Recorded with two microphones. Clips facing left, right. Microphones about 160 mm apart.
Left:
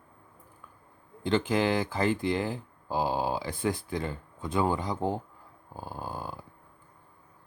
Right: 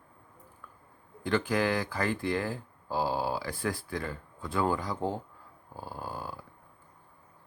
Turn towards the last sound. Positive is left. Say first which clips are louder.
# left 1 dB
turn(degrees=20)  # may be behind; listen again after turning